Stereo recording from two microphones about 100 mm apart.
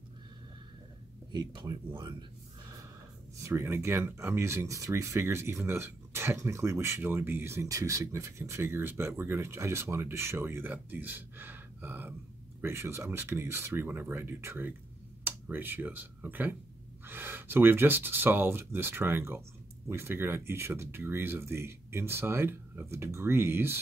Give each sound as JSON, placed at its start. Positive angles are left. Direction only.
{"t": 1.3, "sound": "speech", "side_deg": -50}
{"t": 3.4, "sound": "speech", "side_deg": -25}